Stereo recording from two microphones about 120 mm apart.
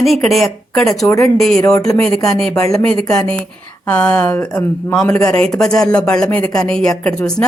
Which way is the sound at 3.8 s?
10° left (ahead or behind).